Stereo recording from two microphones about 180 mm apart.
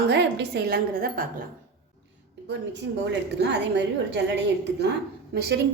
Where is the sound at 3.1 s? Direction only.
75° right (ahead or behind).